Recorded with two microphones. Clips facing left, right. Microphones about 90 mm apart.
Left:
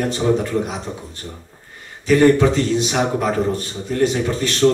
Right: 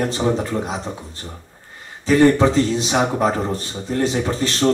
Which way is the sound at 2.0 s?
30° right (ahead or behind).